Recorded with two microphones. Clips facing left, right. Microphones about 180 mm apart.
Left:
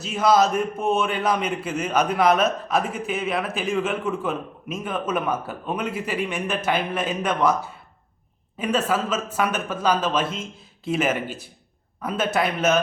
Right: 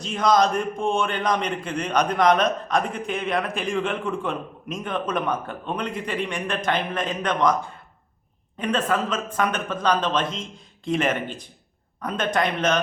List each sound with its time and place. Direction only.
0.0 s a man's voice: 5° left (ahead or behind)